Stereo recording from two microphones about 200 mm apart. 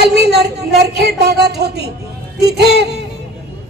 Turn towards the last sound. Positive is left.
turn(degrees=-55)  # may be behind; listen again after turning